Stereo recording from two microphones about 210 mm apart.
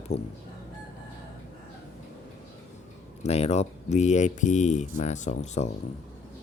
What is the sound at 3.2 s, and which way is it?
Speech, 30° left (ahead or behind).